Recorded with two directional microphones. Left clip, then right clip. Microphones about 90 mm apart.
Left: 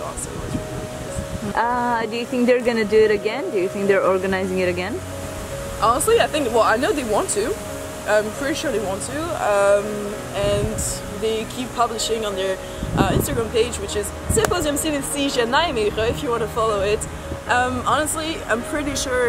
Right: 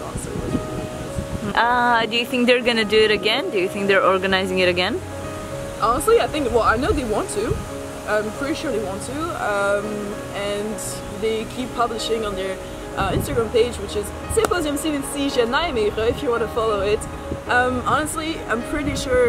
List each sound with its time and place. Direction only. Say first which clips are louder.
1.5 s speech: right 3 dB; 40° right (ahead or behind)
5.8 s a woman's voice: even; 5° left (ahead or behind)
9.2 s a woman's voice: left 3 dB; 10° left (ahead or behind)
10.3 s music: left 5 dB; 5° left (ahead or behind)
11.2 s a woman's voice: even; 5° left (ahead or behind)